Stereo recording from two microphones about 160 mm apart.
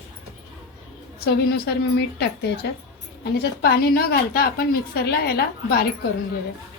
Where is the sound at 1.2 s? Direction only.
90° left; by 5.9 s 75° left (ahead or behind).